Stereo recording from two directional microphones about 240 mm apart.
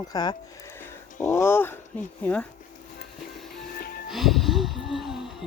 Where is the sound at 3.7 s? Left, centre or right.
Left.